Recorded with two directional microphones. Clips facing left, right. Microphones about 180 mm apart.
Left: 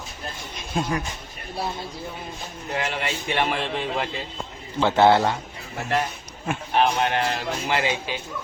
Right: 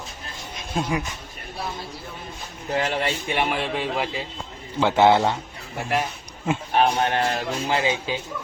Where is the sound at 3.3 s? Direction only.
10° right (ahead or behind).